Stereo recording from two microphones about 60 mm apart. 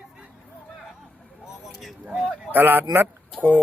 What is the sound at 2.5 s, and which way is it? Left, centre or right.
Speech, right.